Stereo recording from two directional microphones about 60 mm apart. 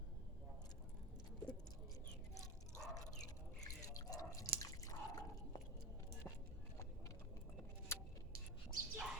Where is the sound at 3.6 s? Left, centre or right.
Left.